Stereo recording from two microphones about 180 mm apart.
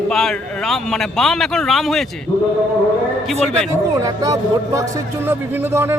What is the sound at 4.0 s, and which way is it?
A man's voice, 20° right (ahead or behind).